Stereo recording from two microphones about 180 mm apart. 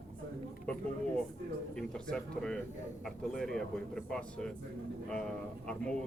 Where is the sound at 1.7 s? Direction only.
5° left (ahead or behind).